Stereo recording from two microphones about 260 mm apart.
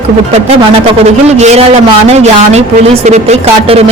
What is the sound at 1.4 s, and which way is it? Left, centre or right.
Speech, right.